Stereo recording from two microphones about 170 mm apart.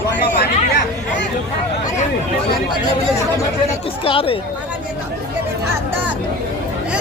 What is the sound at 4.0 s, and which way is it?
Speech, 35° left (ahead or behind).